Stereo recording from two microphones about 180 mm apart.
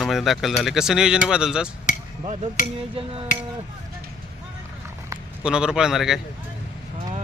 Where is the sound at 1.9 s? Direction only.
45° left (ahead or behind).